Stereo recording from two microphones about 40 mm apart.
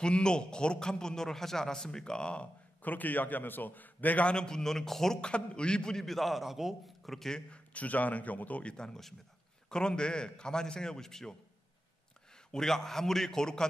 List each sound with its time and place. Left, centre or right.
0.0 s a man's voice: left
2.8 s a man's voice: left
4.3 s a man's voice: centre
5.2 s a man's voice: left
5.9 s a man's voice: centre
7.2 s a man's voice: centre
7.5 s a man's voice: left
8.7 s a man's voice: centre
12.4 s a man's voice: centre